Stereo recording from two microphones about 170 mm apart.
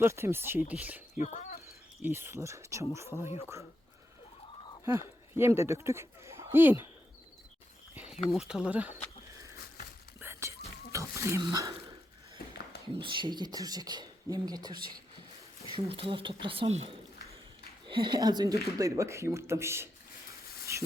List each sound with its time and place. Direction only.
0.0 s speech: 15° right (ahead or behind)
1.2 s a sound: 45° left (ahead or behind)
2.0 s speech: 10° right (ahead or behind)
4.9 s speech: 15° right (ahead or behind)
8.3 s speech: centre (ahead or behind)
10.2 s whispering: 15° right (ahead or behind)
10.9 s speech: 15° right (ahead or behind)
13.0 s speech: 30° right (ahead or behind)
15.9 s speech: 30° right (ahead or behind); by 19.9 s 15° right (ahead or behind)